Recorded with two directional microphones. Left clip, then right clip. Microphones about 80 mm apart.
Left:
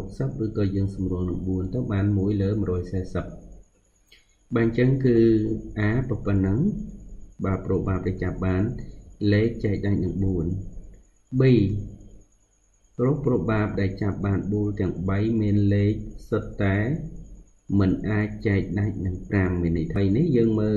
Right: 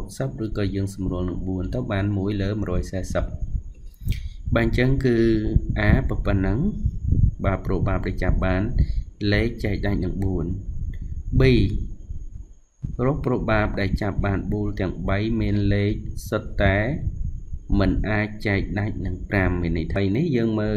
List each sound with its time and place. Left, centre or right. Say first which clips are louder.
0.2 s speech: even; centre
4.5 s speech: right 1 dB; right
11.3 s speech: right 1 dB; right
13.0 s speech: even; right